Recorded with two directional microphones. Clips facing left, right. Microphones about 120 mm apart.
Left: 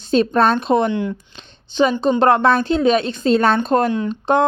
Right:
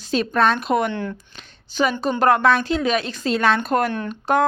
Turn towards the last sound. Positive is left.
turn(degrees=25)  # may be behind; listen again after turning